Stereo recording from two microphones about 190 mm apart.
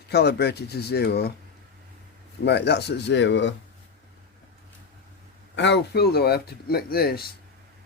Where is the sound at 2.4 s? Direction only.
60° left (ahead or behind).